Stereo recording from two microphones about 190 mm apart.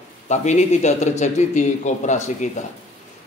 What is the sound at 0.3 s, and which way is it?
A man's voice, 40° left (ahead or behind).